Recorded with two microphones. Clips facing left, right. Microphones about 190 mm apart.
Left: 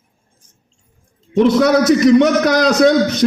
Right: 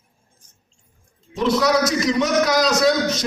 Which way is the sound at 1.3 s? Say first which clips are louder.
Left 7 dB; 60° left (ahead or behind).